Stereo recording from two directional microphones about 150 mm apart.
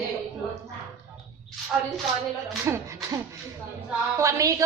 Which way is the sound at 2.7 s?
15° right (ahead or behind).